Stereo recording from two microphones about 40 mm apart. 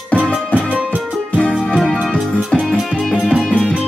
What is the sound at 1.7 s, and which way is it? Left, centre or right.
Music, centre.